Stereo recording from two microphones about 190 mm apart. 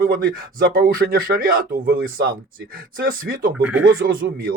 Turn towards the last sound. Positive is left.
turn(degrees=-50)  # may be behind; listen again after turning